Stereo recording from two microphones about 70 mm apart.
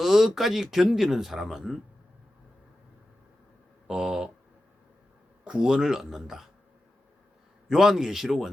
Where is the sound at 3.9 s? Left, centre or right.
Centre.